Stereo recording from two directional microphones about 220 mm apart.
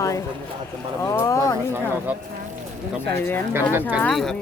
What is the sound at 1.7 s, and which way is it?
Speech, 10° right (ahead or behind).